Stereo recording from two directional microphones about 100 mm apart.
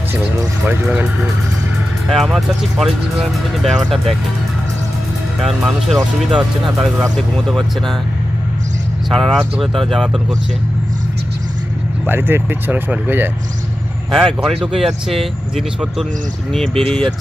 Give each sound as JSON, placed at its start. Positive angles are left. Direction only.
{"t": 0.7, "sound": "speech", "side_deg": -20}
{"t": 2.0, "sound": "speech", "side_deg": 0}
{"t": 5.4, "sound": "speech", "side_deg": -5}
{"t": 9.1, "sound": "speech", "side_deg": 0}
{"t": 12.1, "sound": "speech", "side_deg": -20}
{"t": 14.1, "sound": "speech", "side_deg": 0}